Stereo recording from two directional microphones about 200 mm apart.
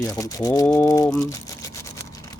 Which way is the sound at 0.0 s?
15° left (ahead or behind).